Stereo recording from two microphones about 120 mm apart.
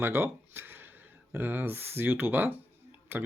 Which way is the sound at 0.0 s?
20° right (ahead or behind).